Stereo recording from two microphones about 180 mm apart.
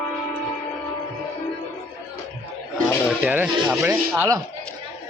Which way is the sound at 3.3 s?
10° right (ahead or behind).